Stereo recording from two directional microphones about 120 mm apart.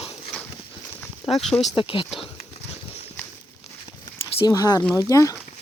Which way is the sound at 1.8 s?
45° left (ahead or behind).